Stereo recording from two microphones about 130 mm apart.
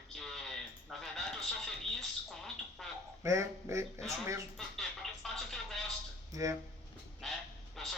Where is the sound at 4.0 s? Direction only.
Centre (ahead or behind).